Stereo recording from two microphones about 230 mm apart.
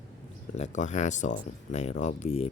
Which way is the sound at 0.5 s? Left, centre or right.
Left.